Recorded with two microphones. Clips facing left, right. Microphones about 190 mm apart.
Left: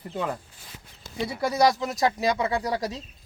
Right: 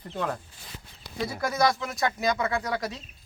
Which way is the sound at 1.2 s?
30° left (ahead or behind).